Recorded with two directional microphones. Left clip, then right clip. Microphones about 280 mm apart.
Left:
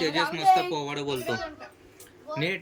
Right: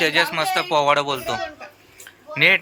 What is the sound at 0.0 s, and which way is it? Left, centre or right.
Speech, centre.